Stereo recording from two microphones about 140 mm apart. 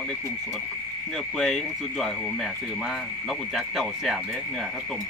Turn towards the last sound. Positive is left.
turn(degrees=0)  # may be behind; listen again after turning